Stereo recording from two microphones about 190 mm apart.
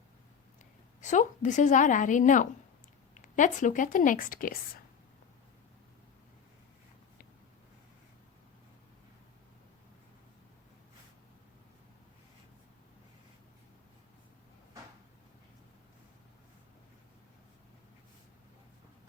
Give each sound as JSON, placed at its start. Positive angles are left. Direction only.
{"t": 1.0, "sound": "a woman's voice", "side_deg": 40}